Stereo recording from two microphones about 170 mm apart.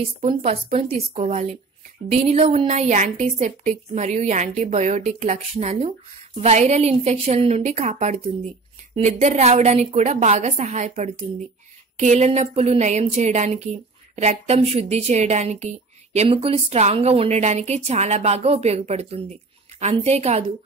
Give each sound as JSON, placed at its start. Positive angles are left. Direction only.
{"t": 0.2, "sound": "a woman's voice", "side_deg": -35}
{"t": 2.9, "sound": "a woman's voice", "side_deg": -45}